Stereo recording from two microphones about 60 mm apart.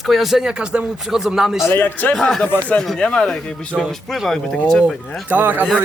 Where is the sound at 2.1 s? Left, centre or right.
Centre.